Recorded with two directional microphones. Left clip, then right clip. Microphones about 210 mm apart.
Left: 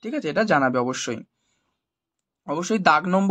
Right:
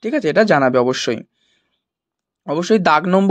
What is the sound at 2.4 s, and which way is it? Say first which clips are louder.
Speech: right 6 dB; 30° right (ahead or behind).